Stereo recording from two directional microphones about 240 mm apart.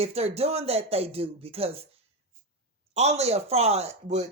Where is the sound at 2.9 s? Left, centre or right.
Right.